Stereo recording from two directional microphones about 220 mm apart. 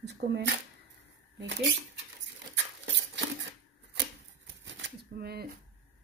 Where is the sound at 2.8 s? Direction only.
55° right (ahead or behind).